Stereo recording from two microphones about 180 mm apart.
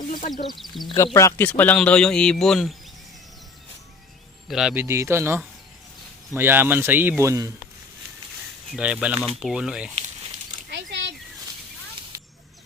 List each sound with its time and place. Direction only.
0.4 s speech: centre (ahead or behind)
0.9 s a man's voice: 15° left (ahead or behind); by 2.7 s centre (ahead or behind)
4.4 s speech: 5° right (ahead or behind)
8.7 s speech: 5° right (ahead or behind)
10.7 s a sound: 80° right